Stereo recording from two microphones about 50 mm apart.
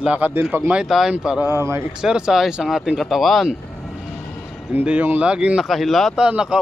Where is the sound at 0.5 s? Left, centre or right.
Right.